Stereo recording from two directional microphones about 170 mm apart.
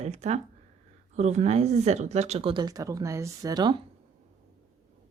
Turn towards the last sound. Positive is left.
turn(degrees=-25)  # may be behind; listen again after turning